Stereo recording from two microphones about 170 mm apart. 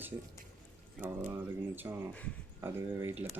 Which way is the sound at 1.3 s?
10° right (ahead or behind).